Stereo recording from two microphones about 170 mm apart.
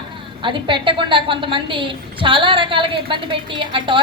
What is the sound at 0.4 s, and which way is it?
A woman's voice, 30° right (ahead or behind).